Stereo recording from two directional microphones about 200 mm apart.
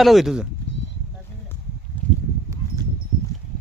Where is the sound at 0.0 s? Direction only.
Centre (ahead or behind).